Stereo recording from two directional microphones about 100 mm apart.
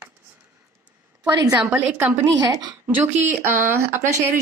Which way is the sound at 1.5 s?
15° right (ahead or behind).